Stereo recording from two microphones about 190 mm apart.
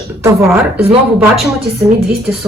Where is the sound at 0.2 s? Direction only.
15° right (ahead or behind).